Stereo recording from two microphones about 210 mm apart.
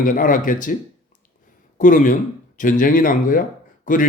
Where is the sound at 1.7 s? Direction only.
40° left (ahead or behind).